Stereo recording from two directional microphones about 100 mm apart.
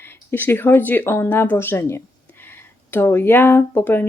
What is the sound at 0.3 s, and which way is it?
Speech, 20° left (ahead or behind).